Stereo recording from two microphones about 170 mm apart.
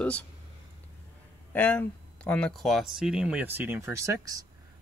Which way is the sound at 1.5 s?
10° left (ahead or behind).